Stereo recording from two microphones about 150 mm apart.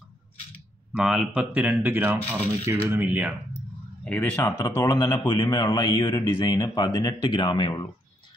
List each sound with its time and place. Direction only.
0.9 s speech: 5° right (ahead or behind)
3.5 s a sound: 10° left (ahead or behind)
4.6 s speech: 20° left (ahead or behind)